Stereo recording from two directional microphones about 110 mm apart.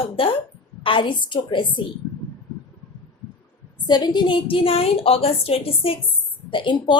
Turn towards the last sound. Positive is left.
turn(degrees=45)  # may be behind; listen again after turning